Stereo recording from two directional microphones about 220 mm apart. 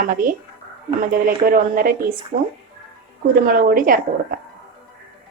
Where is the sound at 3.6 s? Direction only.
40° right (ahead or behind).